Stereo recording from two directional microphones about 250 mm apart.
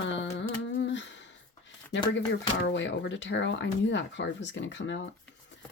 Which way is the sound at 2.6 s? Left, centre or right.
Left.